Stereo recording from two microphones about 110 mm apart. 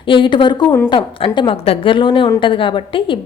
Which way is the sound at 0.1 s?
50° left (ahead or behind).